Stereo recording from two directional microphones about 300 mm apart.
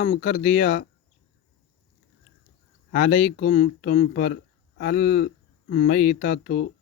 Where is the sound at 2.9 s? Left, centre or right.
Left.